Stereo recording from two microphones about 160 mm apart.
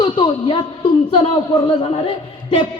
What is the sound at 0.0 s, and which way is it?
A man's voice, 30° left (ahead or behind).